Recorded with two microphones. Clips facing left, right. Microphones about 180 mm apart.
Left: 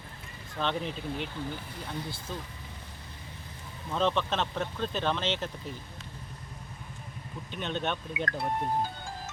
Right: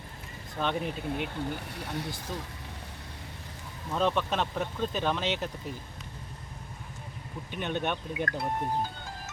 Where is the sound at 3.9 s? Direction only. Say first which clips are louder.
Even; 10° right (ahead or behind).